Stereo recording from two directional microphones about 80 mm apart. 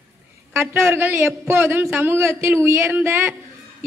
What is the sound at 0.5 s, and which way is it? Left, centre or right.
A man's voice, right.